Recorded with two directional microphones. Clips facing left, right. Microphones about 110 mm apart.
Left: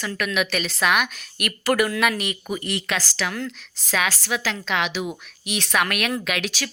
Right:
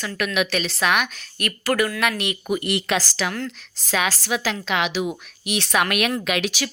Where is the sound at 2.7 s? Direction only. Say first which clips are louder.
Right 4 dB; 15° right (ahead or behind).